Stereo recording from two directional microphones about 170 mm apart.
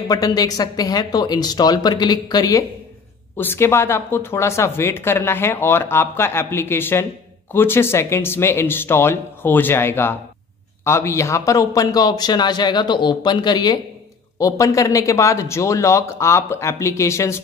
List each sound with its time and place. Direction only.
0.1 s a man's voice: 25° left (ahead or behind)